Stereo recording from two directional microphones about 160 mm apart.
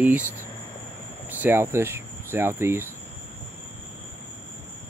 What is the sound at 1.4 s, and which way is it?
Speech, 15° right (ahead or behind).